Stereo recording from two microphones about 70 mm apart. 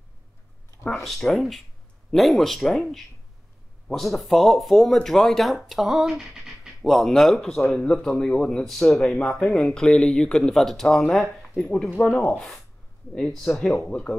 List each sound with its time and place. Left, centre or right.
1.0 s speech: centre
3.9 s speech: centre
13.8 s speech: centre